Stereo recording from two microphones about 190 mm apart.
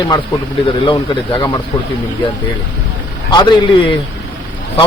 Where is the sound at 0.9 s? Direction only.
25° left (ahead or behind).